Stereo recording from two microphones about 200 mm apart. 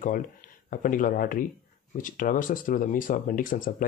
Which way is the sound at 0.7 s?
45° left (ahead or behind).